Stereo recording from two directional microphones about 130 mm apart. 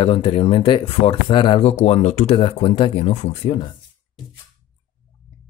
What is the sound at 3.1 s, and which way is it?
Speech, 60° left (ahead or behind).